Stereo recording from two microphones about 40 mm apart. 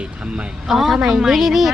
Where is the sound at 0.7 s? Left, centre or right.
Centre.